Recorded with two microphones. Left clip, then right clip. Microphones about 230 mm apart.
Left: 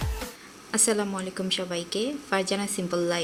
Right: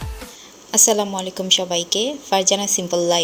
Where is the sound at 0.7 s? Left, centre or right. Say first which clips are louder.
Right 9 dB; centre.